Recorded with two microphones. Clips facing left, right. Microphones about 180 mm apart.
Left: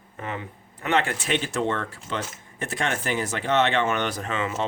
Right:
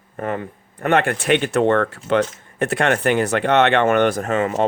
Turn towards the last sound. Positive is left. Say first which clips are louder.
# right 8 dB
turn(degrees=-45)  # may be behind; listen again after turning